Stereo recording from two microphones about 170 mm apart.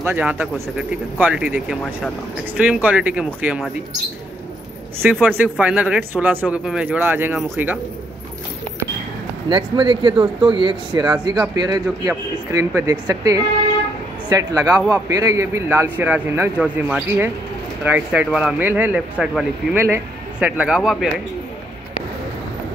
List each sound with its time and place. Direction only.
0.0 s speech: 10° right (ahead or behind)
5.2 s speech: 10° right (ahead or behind)
9.5 s speech: 25° right (ahead or behind); by 21.1 s centre (ahead or behind)